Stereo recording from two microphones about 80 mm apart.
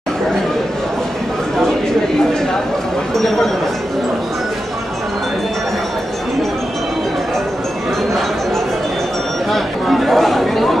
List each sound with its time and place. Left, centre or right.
9.5 s chatter: centre